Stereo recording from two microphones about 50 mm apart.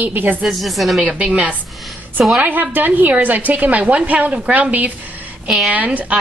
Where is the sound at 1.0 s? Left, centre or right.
Right.